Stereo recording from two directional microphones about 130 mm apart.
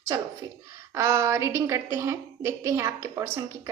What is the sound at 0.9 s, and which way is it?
A woman's voice, 25° right (ahead or behind).